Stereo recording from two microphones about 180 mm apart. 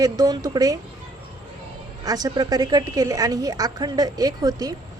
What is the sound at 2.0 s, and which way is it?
A woman's voice, 20° right (ahead or behind).